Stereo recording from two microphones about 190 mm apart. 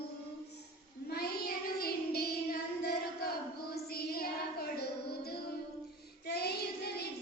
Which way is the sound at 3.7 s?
55° left (ahead or behind).